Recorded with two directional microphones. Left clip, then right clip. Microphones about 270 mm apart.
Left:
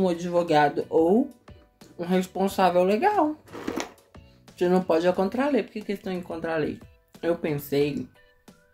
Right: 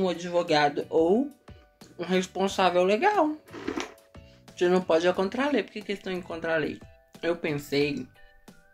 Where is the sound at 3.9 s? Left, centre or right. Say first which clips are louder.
Right 1 dB; centre.